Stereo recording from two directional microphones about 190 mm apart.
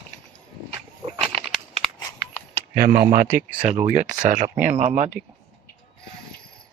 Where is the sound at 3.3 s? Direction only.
35° right (ahead or behind).